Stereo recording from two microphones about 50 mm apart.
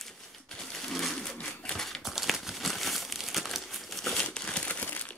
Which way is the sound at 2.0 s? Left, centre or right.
Centre.